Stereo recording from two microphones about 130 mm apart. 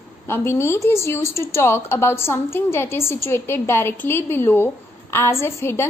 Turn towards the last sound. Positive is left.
turn(degrees=20)  # may be behind; listen again after turning